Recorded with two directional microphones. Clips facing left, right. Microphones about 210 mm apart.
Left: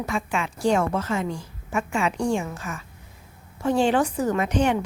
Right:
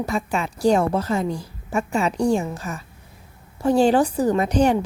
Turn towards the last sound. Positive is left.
turn(degrees=-35)  # may be behind; listen again after turning